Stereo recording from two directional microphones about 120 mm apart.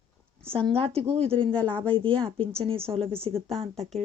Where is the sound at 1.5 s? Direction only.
10° left (ahead or behind).